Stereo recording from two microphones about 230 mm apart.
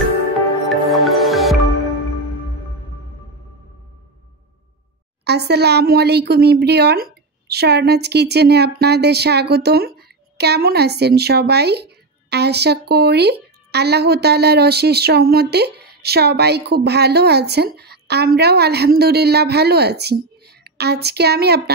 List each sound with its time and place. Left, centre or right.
0.7 s music: centre
5.2 s a woman's voice: right